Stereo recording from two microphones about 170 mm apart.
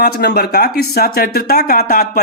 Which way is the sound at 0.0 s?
75° left (ahead or behind).